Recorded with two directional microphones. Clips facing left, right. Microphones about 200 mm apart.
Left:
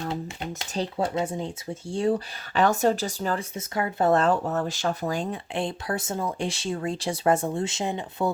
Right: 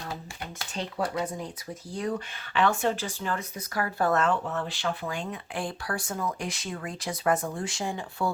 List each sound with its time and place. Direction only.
0.7 s speech: 30° left (ahead or behind)
3.5 s speech: 25° left (ahead or behind)
5.5 s speech: 25° left (ahead or behind)